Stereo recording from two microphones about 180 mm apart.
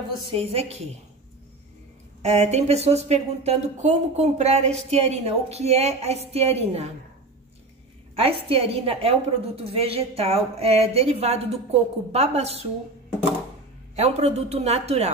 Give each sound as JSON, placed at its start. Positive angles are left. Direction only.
{"t": 0.3, "sound": "speech", "side_deg": -30}
{"t": 2.2, "sound": "speech", "side_deg": -40}
{"t": 8.2, "sound": "speech", "side_deg": -30}
{"t": 13.9, "sound": "speech", "side_deg": -35}